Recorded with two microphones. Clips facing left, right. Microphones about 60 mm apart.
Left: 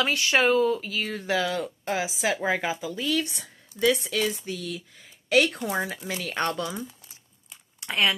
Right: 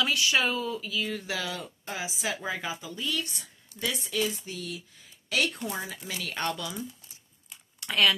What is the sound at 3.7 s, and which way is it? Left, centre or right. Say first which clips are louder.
Speech: left 7 dB; left.